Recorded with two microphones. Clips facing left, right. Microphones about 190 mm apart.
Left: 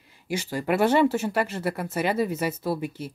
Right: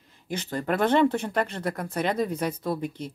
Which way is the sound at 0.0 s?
10° left (ahead or behind).